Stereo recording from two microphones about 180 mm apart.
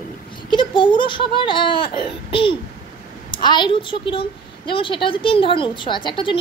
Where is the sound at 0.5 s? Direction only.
25° left (ahead or behind).